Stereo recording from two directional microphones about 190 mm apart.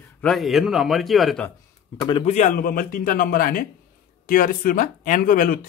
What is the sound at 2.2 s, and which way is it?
Speech, 40° left (ahead or behind).